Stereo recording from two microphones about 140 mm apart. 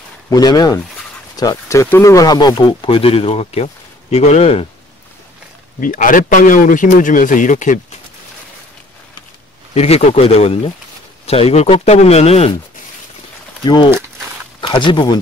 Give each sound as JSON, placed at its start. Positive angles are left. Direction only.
{"t": 0.3, "sound": "speech", "side_deg": 30}
{"t": 5.8, "sound": "speech", "side_deg": 70}
{"t": 9.8, "sound": "speech", "side_deg": 50}
{"t": 13.8, "sound": "walk", "side_deg": -15}
{"t": 14.6, "sound": "speech", "side_deg": 35}